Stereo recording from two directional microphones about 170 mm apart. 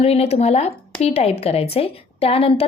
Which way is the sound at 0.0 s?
35° left (ahead or behind).